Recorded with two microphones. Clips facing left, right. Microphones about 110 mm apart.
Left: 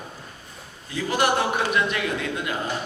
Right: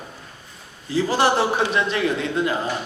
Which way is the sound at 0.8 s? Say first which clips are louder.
Right 4 dB; 30° right (ahead or behind).